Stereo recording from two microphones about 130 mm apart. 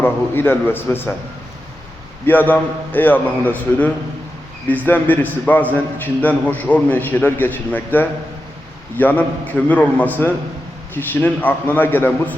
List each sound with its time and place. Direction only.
0.0 s a man's voice: 15° left (ahead or behind)
2.2 s a man's voice: 15° left (ahead or behind)